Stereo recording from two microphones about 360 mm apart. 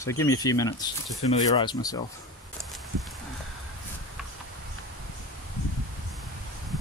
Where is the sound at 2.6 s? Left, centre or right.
Centre.